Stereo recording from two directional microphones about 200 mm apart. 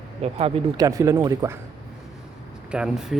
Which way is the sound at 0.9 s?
15° right (ahead or behind).